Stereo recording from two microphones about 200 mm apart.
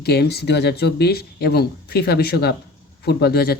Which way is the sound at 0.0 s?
55° left (ahead or behind).